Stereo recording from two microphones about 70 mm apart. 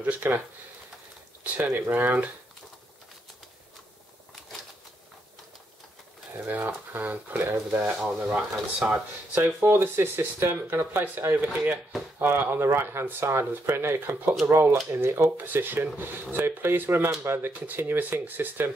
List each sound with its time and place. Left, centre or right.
0.0 s speech: right
1.4 s speech: right
6.3 s speech: right
7.8 s speech: centre; by 18.7 s right